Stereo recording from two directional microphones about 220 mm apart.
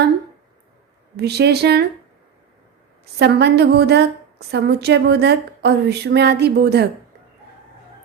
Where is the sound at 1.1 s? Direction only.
50° right (ahead or behind).